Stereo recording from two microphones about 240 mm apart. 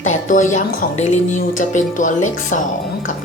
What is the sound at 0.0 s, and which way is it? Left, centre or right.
Speech, left.